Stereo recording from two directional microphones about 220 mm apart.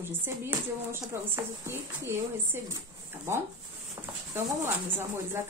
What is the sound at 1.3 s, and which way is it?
A woman's voice, 10° right (ahead or behind).